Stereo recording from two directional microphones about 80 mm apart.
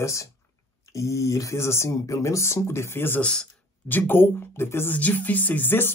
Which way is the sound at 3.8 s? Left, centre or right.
Left.